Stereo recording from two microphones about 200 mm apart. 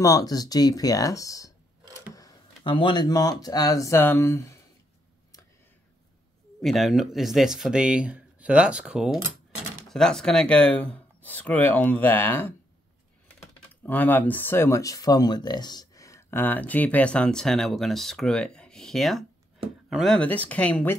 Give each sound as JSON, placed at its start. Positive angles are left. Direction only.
{"t": 0.0, "sound": "speech", "side_deg": 20}
{"t": 6.6, "sound": "speech", "side_deg": 0}
{"t": 13.8, "sound": "speech", "side_deg": 10}